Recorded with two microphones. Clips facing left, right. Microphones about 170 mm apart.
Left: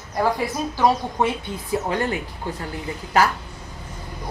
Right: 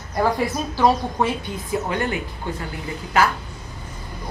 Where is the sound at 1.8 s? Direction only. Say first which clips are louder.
Left 2 dB; 35° left (ahead or behind).